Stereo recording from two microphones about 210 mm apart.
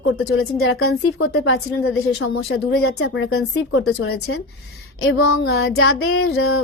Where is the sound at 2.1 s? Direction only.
65° left (ahead or behind).